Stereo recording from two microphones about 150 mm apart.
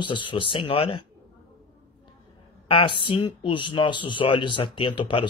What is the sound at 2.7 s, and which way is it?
Speech, 35° left (ahead or behind).